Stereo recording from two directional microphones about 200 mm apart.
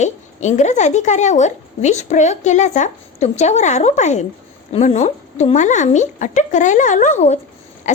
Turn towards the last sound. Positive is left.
turn(degrees=35)  # may be behind; listen again after turning